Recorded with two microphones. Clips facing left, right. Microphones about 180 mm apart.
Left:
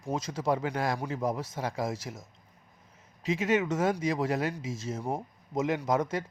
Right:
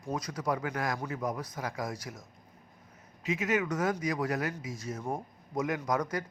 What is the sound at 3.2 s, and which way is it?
Speech, 30° left (ahead or behind).